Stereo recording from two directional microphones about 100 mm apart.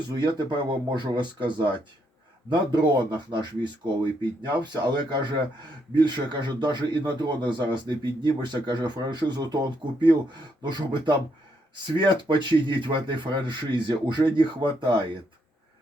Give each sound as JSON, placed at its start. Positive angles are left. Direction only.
{"t": 0.1, "sound": "a man's voice", "side_deg": -45}
{"t": 10.6, "sound": "a man's voice", "side_deg": -50}